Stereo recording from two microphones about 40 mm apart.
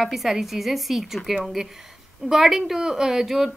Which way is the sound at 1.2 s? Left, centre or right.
Centre.